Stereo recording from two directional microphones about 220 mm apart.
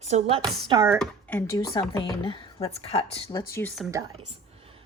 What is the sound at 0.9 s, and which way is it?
Speech, 5° left (ahead or behind).